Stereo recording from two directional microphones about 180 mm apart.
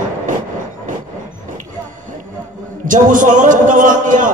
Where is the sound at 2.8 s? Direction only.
45° right (ahead or behind).